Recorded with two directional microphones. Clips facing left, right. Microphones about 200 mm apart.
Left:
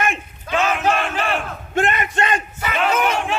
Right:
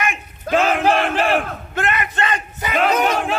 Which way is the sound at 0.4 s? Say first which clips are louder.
Right 4 dB; 50° right (ahead or behind).